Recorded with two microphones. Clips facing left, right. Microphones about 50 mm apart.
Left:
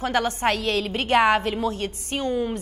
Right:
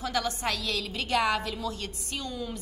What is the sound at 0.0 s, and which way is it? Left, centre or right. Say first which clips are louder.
A woman's voice: left 7 dB; left.